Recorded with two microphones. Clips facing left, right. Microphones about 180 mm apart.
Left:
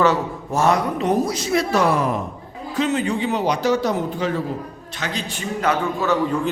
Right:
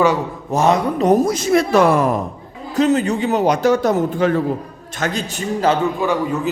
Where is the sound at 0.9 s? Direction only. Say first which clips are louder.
Right 5 dB; 45° right (ahead or behind).